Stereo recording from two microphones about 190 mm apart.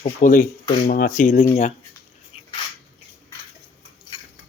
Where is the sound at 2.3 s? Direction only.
30° left (ahead or behind).